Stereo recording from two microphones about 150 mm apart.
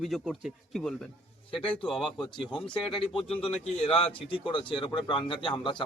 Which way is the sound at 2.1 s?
30° left (ahead or behind).